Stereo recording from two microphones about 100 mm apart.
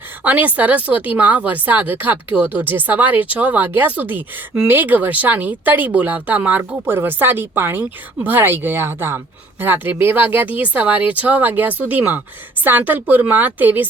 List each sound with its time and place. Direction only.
0.3 s speech: 15° right (ahead or behind)